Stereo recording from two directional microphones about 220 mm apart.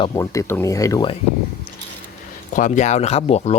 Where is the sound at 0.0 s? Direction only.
15° left (ahead or behind).